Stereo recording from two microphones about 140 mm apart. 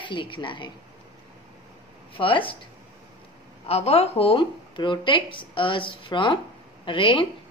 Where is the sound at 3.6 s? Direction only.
45° left (ahead or behind).